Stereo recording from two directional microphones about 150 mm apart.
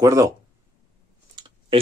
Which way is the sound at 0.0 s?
20° right (ahead or behind).